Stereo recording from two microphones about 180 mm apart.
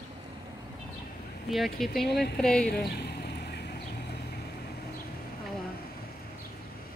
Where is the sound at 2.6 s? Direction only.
60° left (ahead or behind).